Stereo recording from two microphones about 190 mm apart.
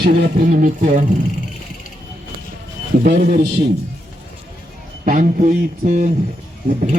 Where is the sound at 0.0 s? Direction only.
55° right (ahead or behind).